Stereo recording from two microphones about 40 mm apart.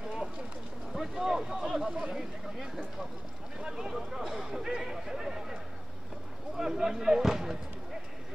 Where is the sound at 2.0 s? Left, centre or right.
Centre.